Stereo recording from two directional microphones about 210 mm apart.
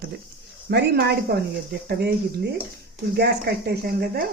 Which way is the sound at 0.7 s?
50° right (ahead or behind).